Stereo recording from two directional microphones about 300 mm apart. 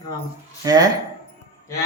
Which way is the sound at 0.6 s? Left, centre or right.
Centre.